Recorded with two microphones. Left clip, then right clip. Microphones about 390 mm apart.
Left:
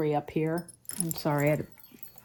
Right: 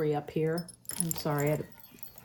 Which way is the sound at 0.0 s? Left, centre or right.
Centre.